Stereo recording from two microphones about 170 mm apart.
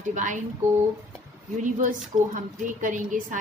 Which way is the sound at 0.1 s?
50° right (ahead or behind).